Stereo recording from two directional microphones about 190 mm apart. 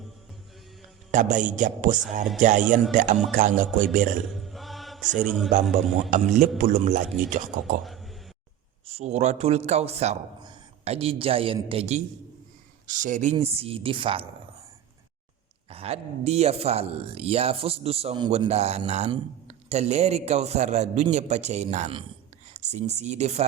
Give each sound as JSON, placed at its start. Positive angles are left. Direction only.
{"t": 1.1, "sound": "a man's voice", "side_deg": -40}
{"t": 4.3, "sound": "chant", "side_deg": 0}
{"t": 5.2, "sound": "speech", "side_deg": -5}
{"t": 6.0, "sound": "a man's voice", "side_deg": -40}
{"t": 7.9, "sound": "a sound", "side_deg": 0}
{"t": 8.9, "sound": "a man's voice", "side_deg": -35}
{"t": 15.7, "sound": "a man's voice", "side_deg": -30}